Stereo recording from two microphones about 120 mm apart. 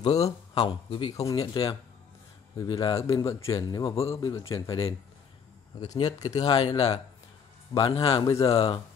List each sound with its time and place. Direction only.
0.0 s speech: 60° left (ahead or behind)
0.7 s speech: 45° left (ahead or behind)
3.9 s speech: 55° left (ahead or behind)
4.2 s speech: 35° left (ahead or behind)
6.0 s speech: 35° left (ahead or behind)
6.4 s speech: 45° left (ahead or behind)
8.2 s speech: 30° left (ahead or behind)
8.5 s speech: 50° left (ahead or behind)